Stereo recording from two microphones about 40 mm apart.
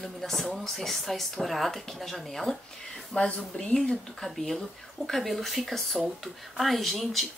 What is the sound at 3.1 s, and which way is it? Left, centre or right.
A woman's voice, centre.